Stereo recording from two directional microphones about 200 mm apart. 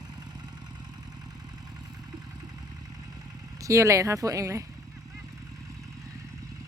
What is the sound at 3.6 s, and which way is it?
Speech, 15° right (ahead or behind).